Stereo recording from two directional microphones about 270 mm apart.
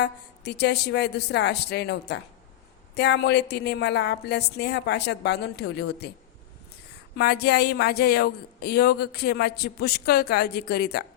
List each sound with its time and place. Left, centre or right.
0.0 s speech: left
7.2 s speech: left